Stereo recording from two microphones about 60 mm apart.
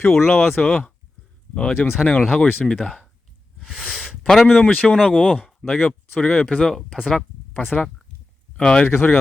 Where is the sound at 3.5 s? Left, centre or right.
Centre.